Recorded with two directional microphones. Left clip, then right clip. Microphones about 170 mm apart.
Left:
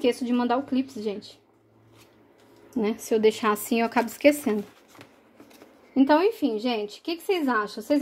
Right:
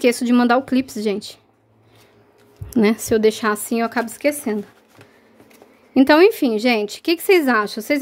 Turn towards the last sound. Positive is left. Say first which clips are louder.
# right 9 dB
turn(degrees=-50)  # may be behind; listen again after turning